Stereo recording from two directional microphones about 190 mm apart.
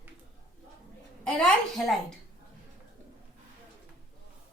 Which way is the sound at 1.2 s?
5° left (ahead or behind).